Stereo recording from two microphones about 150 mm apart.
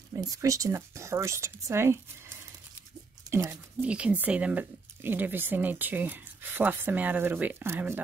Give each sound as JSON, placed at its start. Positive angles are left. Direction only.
{"t": 0.3, "sound": "speech", "side_deg": -20}
{"t": 3.3, "sound": "speech", "side_deg": -15}